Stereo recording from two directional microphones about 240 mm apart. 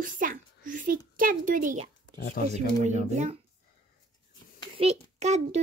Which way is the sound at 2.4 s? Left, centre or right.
Left.